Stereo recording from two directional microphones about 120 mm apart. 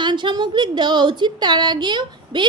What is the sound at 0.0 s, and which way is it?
A woman's voice, 40° right (ahead or behind).